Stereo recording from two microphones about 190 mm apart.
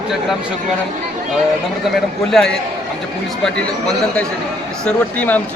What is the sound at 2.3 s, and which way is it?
Speech, 5° left (ahead or behind).